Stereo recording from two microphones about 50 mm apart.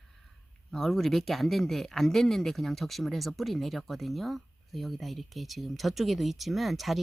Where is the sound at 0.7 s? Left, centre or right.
Centre.